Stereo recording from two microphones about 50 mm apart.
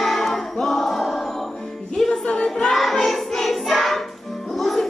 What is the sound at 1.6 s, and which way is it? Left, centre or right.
Music, centre.